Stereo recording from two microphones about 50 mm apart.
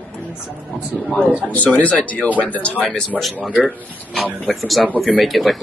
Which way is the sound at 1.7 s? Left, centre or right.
Left.